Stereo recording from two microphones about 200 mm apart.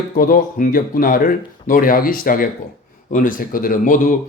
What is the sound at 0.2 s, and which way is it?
Speech, 45° left (ahead or behind).